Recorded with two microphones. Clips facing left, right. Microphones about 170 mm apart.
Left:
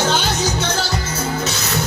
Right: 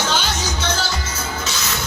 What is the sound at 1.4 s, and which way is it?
Music, 35° left (ahead or behind).